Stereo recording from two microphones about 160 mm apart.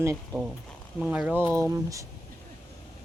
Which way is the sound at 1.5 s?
20° right (ahead or behind).